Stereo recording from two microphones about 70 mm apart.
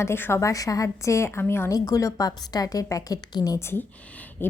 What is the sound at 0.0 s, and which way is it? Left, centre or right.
A woman's voice, left.